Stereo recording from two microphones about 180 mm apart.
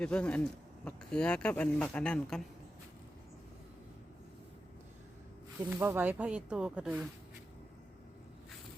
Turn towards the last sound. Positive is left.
turn(degrees=-5)  # may be behind; listen again after turning